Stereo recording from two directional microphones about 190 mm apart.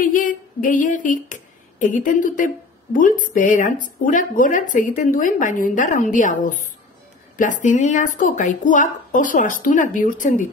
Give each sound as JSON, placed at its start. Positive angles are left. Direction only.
{"t": 0.0, "sound": "speech", "side_deg": 45}